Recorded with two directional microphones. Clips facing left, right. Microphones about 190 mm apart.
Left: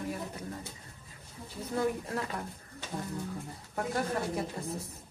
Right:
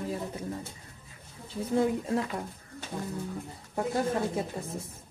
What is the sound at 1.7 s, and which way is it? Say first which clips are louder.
Speech: right 5 dB; 20° right (ahead or behind).